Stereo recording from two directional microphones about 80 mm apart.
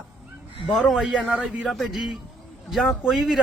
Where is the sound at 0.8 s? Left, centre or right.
Centre.